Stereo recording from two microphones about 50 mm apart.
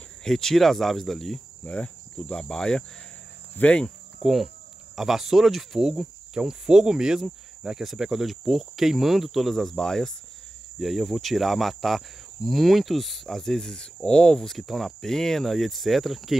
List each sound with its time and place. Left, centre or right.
0.2 s cricket: centre
1.6 s cricket: left
3.5 s cricket: left
4.2 s cricket: centre
10.8 s cricket: centre
14.4 s cricket: centre